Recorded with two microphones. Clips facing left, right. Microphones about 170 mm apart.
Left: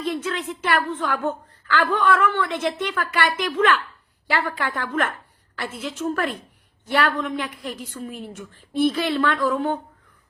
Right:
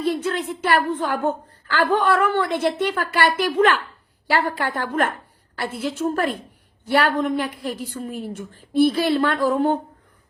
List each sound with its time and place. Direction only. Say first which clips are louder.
0.0 s a woman's voice: right 3 dB; 40° right (ahead or behind)
0.9 s speech: right 2 dB; 55° right (ahead or behind)
1.2 s a woman's voice: right 3 dB; 35° right (ahead or behind)
9.0 s a woman's voice: right 2 dB; 35° right (ahead or behind)